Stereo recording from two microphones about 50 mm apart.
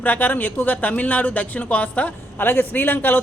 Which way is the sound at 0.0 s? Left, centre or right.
Left.